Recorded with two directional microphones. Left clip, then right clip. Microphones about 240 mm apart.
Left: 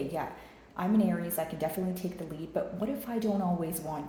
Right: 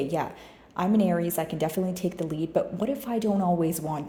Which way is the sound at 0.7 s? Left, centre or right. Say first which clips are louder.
Right 5 dB; right.